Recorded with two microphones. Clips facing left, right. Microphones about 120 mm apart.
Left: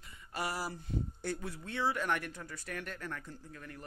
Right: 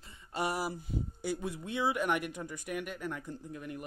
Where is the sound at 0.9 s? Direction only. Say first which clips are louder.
Right 2 dB; 5° right (ahead or behind).